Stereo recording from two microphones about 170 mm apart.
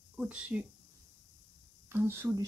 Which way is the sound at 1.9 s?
15° right (ahead or behind).